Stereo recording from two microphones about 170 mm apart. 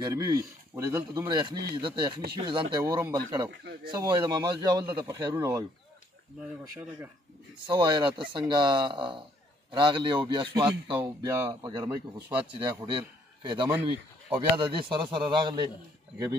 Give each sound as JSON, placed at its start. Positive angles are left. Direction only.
{"t": 0.0, "sound": "speech", "side_deg": -20}
{"t": 7.6, "sound": "a man's voice", "side_deg": -25}